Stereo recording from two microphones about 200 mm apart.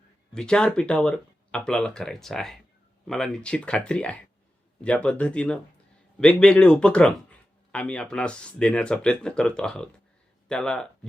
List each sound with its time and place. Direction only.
0.3 s speech: 5° left (ahead or behind)